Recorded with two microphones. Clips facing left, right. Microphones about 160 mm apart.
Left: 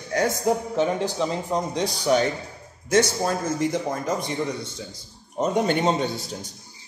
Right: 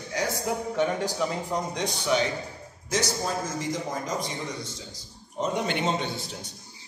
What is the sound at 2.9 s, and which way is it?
A man's voice, 55° left (ahead or behind).